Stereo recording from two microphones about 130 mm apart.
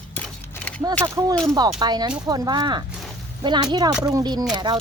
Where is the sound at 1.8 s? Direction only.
35° right (ahead or behind).